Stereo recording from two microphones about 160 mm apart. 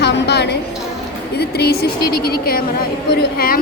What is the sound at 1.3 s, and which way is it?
A woman's voice, 80° left.